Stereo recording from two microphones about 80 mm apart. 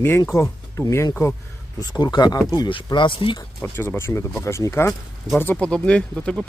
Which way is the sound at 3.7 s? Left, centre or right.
Left.